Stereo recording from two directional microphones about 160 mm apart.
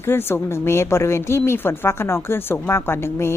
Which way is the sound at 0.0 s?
15° left (ahead or behind).